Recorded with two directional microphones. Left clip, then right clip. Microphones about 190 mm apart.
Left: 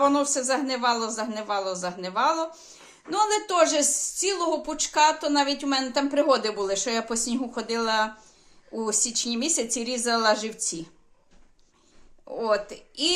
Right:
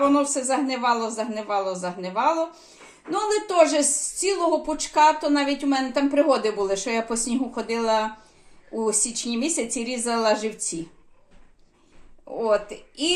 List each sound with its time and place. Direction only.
0.0 s a woman's voice: 5° left (ahead or behind)
12.3 s a woman's voice: centre (ahead or behind)